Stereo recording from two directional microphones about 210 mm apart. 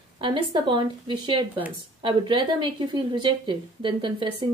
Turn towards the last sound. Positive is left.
turn(degrees=-20)  # may be behind; listen again after turning